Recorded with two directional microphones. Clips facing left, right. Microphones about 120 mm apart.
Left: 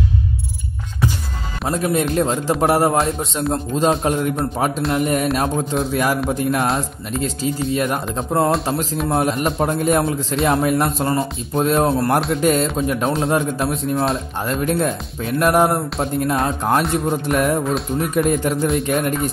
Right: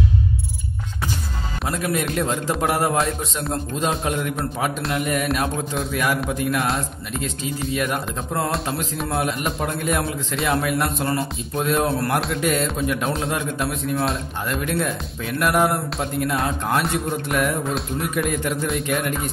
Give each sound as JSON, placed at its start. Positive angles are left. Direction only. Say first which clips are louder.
{"t": 1.7, "sound": "speech", "louder": "left 5 dB", "side_deg": 30}